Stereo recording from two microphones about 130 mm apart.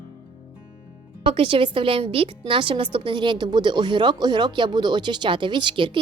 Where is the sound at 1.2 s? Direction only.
45° right (ahead or behind).